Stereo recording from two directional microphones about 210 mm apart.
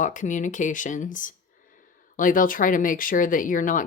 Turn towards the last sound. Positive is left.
turn(degrees=40)  # may be behind; listen again after turning